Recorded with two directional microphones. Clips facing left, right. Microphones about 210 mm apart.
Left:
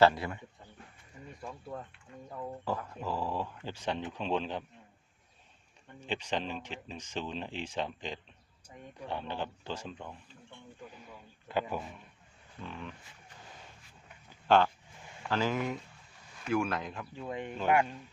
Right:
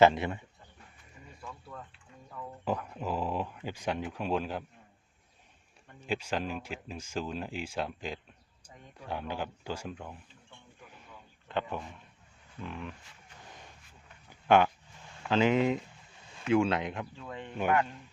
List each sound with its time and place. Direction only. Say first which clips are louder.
0.0 s speech: right 2 dB; 20° right (ahead or behind)
1.4 s speech: left 4 dB; 35° left (ahead or behind)
2.6 s speech: right 4 dB; 15° right (ahead or behind)
6.1 s speech: right 2 dB; 10° right (ahead or behind)
11.4 s a man's voice: left 1 dB; 5° left (ahead or behind)
14.4 s speech: right 2 dB; 15° right (ahead or behind)
17.2 s a man's voice: even; 15° left (ahead or behind)